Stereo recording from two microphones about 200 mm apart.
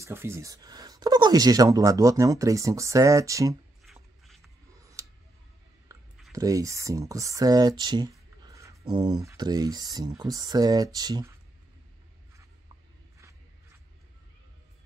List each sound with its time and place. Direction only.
0.0 s speech: 15° right (ahead or behind)
3.8 s shuffle: centre (ahead or behind)
4.7 s a sound: 15° right (ahead or behind)
5.9 s clicking: 15° right (ahead or behind)
6.3 s speech: 15° right (ahead or behind)
8.4 s a sound: 15° right (ahead or behind)
8.9 s speech: 20° right (ahead or behind)